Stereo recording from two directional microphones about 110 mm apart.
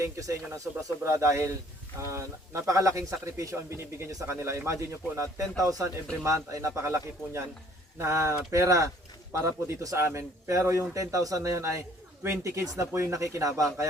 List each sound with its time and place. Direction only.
0.0 s a man's voice: 30° right (ahead or behind)